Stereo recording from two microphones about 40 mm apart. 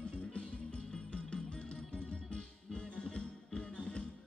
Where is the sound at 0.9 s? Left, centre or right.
Left.